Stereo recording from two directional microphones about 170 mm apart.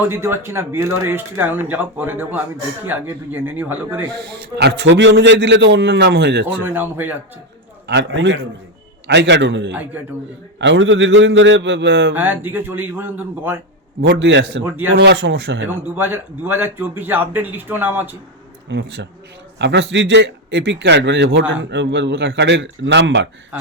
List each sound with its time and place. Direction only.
0.1 s a man's voice: 15° right (ahead or behind)
4.2 s a man's voice: 80° right
6.7 s a man's voice: 10° right (ahead or behind)
7.9 s a man's voice: 90° right
10.0 s a man's voice: 10° right (ahead or behind)
10.6 s a man's voice: 90° right
12.1 s a man's voice: 10° right (ahead or behind)
14.0 s a man's voice: 90° right
14.6 s a man's voice: 15° right (ahead or behind)
14.9 s a man's voice: 90° right
15.6 s a man's voice: 10° right (ahead or behind)
18.7 s a man's voice: 90° right